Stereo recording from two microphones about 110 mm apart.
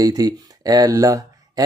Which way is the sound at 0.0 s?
35° right (ahead or behind).